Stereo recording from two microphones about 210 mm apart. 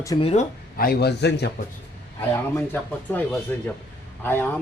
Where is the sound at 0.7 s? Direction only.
45° left (ahead or behind).